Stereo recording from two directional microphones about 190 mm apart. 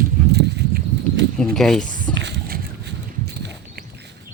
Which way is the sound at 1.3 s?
5° left (ahead or behind).